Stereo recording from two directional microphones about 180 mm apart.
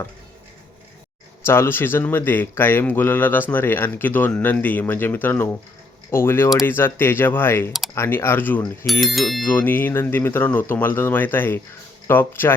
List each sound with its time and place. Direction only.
1.5 s speech: 15° left (ahead or behind)
8.9 s speech: centre (ahead or behind)